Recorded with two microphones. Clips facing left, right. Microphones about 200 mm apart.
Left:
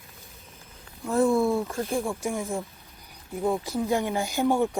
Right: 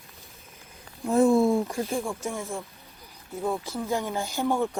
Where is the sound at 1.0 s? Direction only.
20° right (ahead or behind).